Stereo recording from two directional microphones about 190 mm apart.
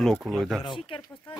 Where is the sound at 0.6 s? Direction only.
25° left (ahead or behind).